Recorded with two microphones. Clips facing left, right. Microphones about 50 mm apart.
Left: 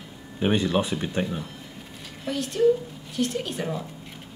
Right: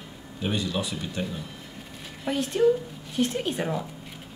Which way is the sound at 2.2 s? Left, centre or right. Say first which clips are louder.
Left 1 dB; right.